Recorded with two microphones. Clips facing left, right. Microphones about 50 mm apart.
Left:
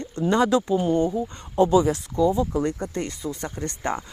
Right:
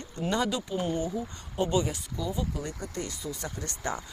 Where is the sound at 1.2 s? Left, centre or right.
Left.